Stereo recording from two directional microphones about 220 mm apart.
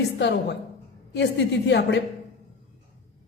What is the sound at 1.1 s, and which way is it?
Speech, 50° left (ahead or behind).